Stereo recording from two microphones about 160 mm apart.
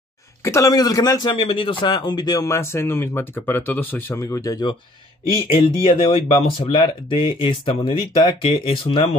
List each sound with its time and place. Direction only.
0.4 s a man's voice: 20° left (ahead or behind)